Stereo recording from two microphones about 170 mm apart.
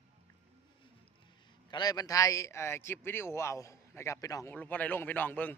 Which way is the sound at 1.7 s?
20° left (ahead or behind).